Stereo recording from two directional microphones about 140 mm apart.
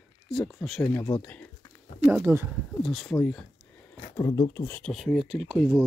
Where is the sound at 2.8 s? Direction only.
Centre (ahead or behind).